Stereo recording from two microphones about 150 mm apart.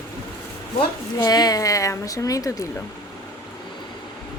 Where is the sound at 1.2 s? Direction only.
25° left (ahead or behind).